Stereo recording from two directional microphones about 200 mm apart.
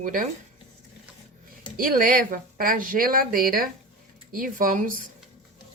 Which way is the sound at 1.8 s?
45° right (ahead or behind).